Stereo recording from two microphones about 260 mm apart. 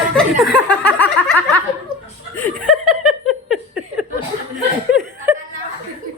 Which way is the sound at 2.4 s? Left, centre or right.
Centre.